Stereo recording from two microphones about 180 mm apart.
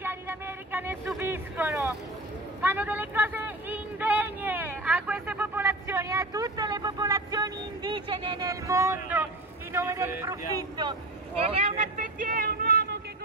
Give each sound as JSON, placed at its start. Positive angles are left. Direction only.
{"t": 0.0, "sound": "vehicle", "side_deg": -10}
{"t": 11.4, "sound": "vehicle", "side_deg": -35}